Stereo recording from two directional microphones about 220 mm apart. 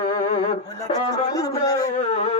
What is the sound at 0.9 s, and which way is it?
Speech, 15° left (ahead or behind).